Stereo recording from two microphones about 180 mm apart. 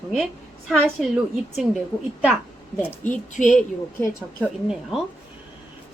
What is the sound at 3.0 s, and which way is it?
Speech, 45° left (ahead or behind).